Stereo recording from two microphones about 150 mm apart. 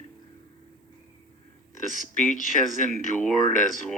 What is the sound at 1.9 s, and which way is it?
Speech, 60° left (ahead or behind).